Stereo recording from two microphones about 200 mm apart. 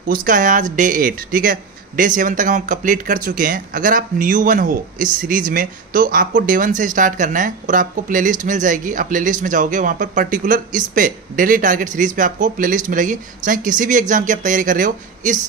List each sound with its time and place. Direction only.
0.1 s speech: 45° right (ahead or behind)